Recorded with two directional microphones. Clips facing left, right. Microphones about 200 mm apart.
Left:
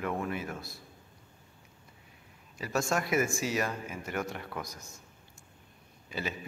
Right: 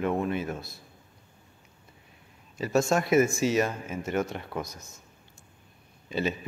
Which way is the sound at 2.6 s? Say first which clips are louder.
Right 6 dB; 25° right (ahead or behind).